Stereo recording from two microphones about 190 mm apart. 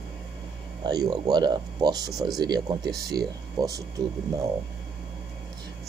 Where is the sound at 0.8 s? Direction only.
20° right (ahead or behind).